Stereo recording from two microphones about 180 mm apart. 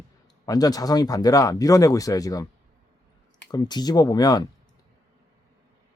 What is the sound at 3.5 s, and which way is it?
Speech, 20° left (ahead or behind).